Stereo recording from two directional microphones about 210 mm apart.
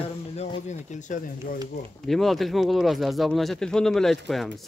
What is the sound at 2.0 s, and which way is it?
Speech, centre (ahead or behind).